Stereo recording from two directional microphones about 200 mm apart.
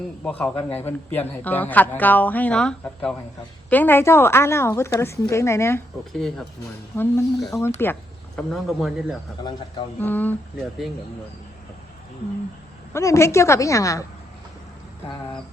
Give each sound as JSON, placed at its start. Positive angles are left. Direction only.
{"t": 0.3, "sound": "a man's voice", "side_deg": 5}
{"t": 6.1, "sound": "a man's voice", "side_deg": 0}
{"t": 8.4, "sound": "a man's voice", "side_deg": 0}
{"t": 9.4, "sound": "a man's voice", "side_deg": 20}
{"t": 10.0, "sound": "a man's voice", "side_deg": 10}
{"t": 12.9, "sound": "a man's voice", "side_deg": 15}